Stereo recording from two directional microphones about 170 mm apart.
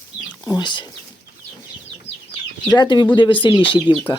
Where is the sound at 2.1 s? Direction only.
90° left.